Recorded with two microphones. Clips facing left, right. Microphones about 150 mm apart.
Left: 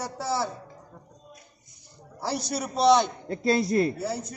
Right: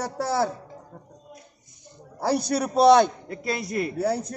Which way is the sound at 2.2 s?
60° right (ahead or behind).